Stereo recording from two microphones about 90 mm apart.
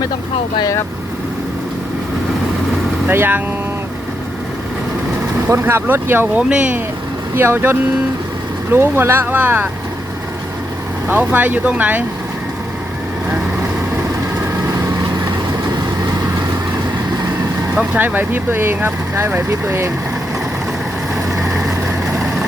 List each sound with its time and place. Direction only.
3.1 s speech: 20° right (ahead or behind)
5.5 s speech: 25° right (ahead or behind)
6.5 s speech: 10° right (ahead or behind)
7.3 s speech: 25° right (ahead or behind)
11.1 s speech: 15° right (ahead or behind)
17.7 s speech: 20° right (ahead or behind)